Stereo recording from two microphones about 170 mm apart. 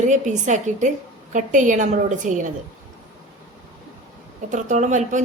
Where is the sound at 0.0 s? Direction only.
45° right (ahead or behind).